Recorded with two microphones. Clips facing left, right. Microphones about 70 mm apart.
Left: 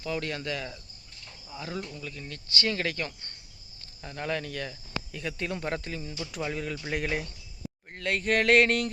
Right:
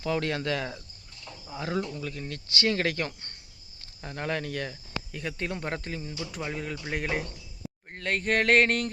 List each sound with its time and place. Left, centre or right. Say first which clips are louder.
0.0 s speech: right 4 dB; right
1.5 s speech: right 5 dB; right
4.0 s speech: right 1 dB; right